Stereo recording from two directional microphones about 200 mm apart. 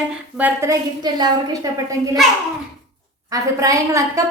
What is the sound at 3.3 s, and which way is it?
Speech, 15° right (ahead or behind).